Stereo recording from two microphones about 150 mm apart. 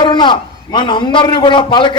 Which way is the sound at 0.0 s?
30° left (ahead or behind).